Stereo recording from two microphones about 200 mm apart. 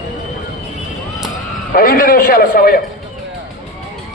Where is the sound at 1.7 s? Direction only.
45° left (ahead or behind).